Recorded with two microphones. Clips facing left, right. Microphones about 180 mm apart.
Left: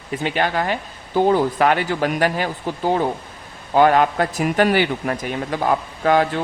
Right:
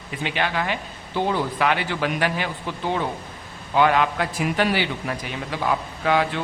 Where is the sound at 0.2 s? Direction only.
45° left (ahead or behind).